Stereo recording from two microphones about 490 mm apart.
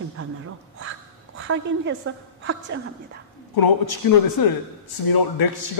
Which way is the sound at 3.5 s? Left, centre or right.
Left.